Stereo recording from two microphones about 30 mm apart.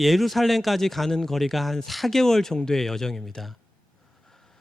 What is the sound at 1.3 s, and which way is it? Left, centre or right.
Speech, centre.